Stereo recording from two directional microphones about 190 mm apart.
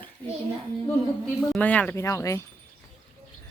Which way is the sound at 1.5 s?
5° left (ahead or behind).